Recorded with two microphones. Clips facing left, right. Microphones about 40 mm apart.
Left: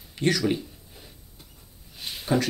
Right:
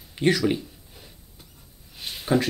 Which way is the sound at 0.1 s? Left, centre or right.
Centre.